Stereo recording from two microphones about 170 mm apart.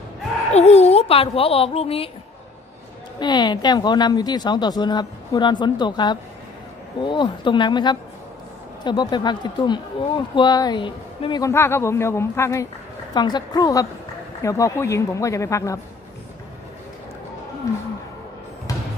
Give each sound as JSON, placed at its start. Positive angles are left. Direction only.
{"t": 0.5, "sound": "speech", "side_deg": 40}
{"t": 3.2, "sound": "speech", "side_deg": 25}